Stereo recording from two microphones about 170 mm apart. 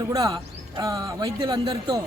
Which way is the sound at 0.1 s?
20° right (ahead or behind).